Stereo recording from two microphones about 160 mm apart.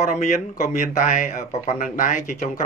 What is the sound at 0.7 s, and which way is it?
Speech, 45° left (ahead or behind).